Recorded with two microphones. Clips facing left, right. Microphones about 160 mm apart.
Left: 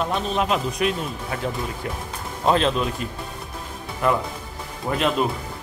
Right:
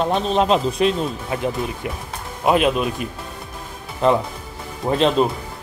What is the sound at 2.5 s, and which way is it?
Speech, 15° right (ahead or behind).